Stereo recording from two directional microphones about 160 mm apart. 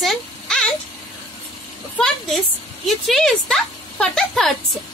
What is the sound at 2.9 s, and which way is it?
Speech, centre (ahead or behind).